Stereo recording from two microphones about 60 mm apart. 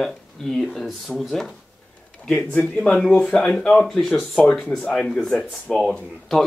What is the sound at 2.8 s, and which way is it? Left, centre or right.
Speech, centre.